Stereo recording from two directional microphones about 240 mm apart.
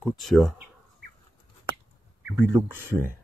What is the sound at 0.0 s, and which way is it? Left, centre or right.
Speech, centre.